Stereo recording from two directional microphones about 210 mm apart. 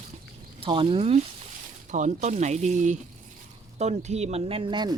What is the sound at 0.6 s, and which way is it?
Speech, 25° right (ahead or behind).